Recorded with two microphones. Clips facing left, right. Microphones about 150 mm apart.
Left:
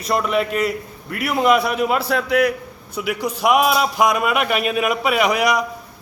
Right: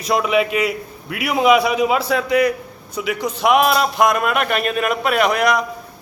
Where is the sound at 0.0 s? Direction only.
Centre (ahead or behind).